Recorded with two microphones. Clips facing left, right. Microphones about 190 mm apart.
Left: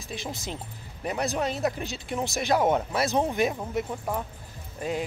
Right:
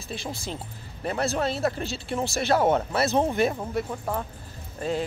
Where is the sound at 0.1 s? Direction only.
20° left (ahead or behind).